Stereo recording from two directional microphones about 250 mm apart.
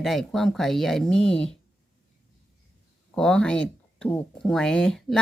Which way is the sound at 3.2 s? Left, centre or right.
Centre.